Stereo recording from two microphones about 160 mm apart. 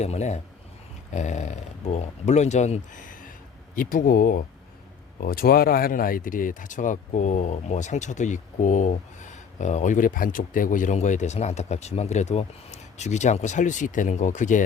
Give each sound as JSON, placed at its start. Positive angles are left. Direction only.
{"t": 0.0, "sound": "speech", "side_deg": 45}